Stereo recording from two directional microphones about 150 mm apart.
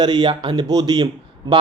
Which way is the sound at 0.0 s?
30° right (ahead or behind).